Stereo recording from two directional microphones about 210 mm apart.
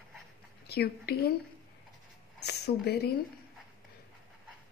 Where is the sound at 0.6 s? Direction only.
50° left (ahead or behind).